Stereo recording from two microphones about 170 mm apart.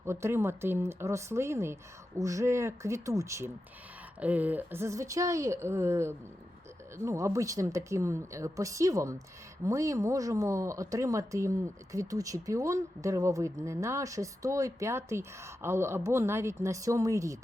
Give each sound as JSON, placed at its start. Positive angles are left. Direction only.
{"t": 0.0, "sound": "speech", "side_deg": -15}